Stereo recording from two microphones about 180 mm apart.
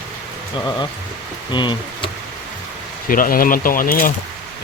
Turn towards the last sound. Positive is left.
turn(degrees=50)  # may be behind; listen again after turning